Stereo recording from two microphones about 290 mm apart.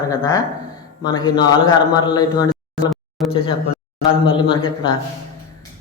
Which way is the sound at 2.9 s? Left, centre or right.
Centre.